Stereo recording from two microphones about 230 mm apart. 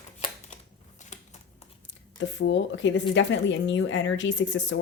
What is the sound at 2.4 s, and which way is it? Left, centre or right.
A woman's voice, left.